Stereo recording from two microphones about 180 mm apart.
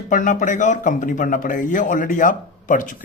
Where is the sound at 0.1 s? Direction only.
45° left (ahead or behind).